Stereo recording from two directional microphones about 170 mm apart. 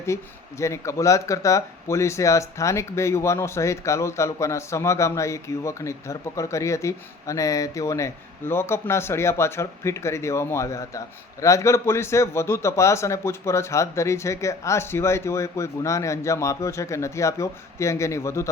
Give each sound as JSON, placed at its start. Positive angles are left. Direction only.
{"t": 0.1, "sound": "speech", "side_deg": 15}